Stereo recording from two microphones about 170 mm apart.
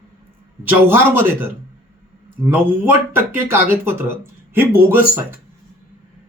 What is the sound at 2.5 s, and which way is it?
Speech, 10° right (ahead or behind).